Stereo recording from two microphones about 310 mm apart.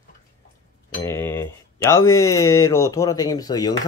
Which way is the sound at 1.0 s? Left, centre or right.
Centre.